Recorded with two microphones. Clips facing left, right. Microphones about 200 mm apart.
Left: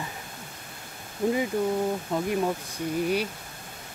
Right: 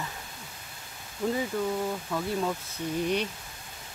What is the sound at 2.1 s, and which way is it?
Speech, 20° left (ahead or behind).